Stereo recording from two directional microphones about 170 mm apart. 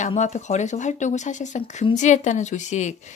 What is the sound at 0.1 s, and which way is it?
Speech, 45° left (ahead or behind).